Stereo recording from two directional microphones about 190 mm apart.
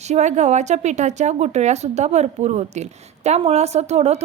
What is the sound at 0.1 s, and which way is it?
Speech, 40° right (ahead or behind).